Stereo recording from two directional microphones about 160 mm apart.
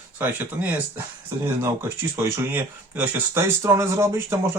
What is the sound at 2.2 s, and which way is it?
Speech, 15° right (ahead or behind).